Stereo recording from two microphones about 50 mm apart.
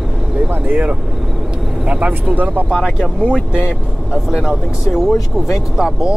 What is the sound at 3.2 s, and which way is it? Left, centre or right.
Speech, right.